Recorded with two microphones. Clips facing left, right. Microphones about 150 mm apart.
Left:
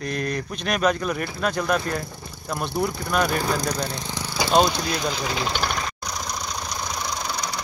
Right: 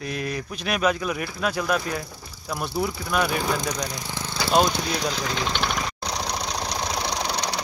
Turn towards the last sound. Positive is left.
turn(degrees=-75)  # may be behind; listen again after turning